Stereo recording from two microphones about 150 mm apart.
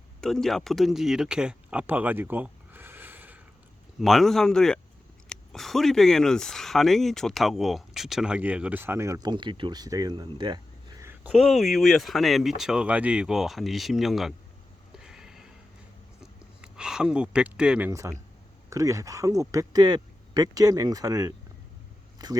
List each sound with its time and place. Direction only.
0.2 s speech: 5° left (ahead or behind)
4.0 s speech: centre (ahead or behind); by 10.6 s 30° right (ahead or behind)
11.0 s a sound: 15° right (ahead or behind)
11.4 s speech: centre (ahead or behind)
14.9 s a sound: 5° right (ahead or behind)
18.7 s speech: 20° right (ahead or behind)